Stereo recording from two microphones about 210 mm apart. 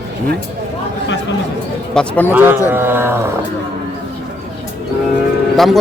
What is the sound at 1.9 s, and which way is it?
Speech, 5° left (ahead or behind).